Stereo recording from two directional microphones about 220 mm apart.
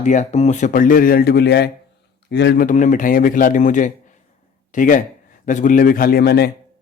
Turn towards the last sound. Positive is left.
turn(degrees=45)  # may be behind; listen again after turning